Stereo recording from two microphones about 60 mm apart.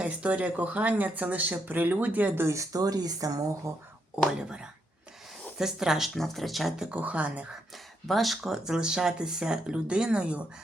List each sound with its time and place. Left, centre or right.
0.0 s speech: centre
2.4 s speech: right
2.7 s speech: right
4.4 s speech: centre
6.1 s speech: centre
6.9 s speech: right
8.0 s speech: centre
8.5 s speech: centre